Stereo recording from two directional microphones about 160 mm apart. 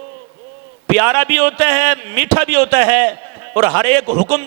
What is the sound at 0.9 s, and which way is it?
A man's voice, 25° right (ahead or behind).